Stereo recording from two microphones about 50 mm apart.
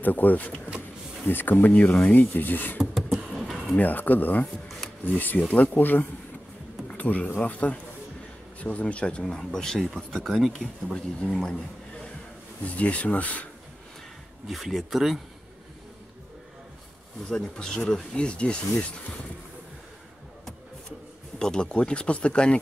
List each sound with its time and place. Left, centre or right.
0.0 s speech: left
2.9 s beatboxing: centre
3.7 s speech: left
9.2 s speech: centre
11.4 s a sound: centre
12.6 s speech: left
14.5 s speech: centre
17.3 s speech: centre
21.4 s speech: centre